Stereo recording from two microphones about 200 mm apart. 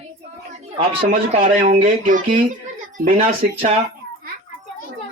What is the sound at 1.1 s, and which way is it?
Speech, 35° right (ahead or behind).